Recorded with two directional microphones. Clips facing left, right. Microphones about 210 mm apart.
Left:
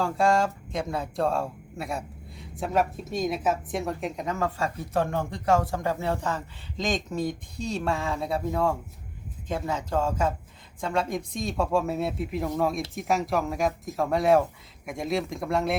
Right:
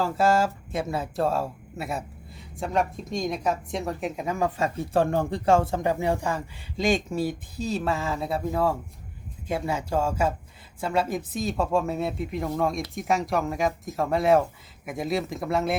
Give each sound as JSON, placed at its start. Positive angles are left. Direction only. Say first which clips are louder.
{"t": 0.0, "sound": "speech", "louder": "right 1 dB", "side_deg": -5}
{"t": 4.9, "sound": "speech", "louder": "right 4 dB", "side_deg": -30}
{"t": 5.8, "sound": "speech", "louder": "right 3 dB", "side_deg": -15}